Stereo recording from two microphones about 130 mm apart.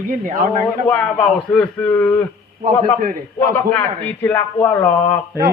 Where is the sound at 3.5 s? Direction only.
15° left (ahead or behind).